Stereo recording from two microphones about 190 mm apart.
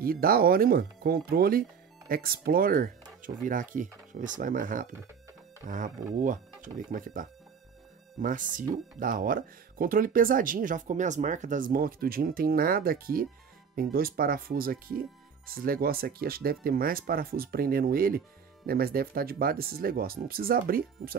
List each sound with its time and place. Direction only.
0.0 s speech: 50° right (ahead or behind)